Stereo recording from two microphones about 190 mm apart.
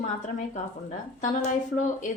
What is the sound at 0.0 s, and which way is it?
Speech, 40° left (ahead or behind).